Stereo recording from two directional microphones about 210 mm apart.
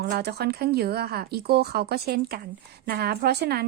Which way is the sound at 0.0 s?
50° right (ahead or behind).